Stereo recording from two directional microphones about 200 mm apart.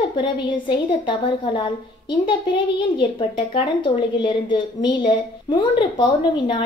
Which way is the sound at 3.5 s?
25° left (ahead or behind).